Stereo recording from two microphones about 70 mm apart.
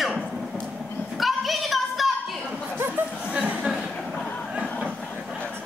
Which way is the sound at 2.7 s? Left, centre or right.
Right.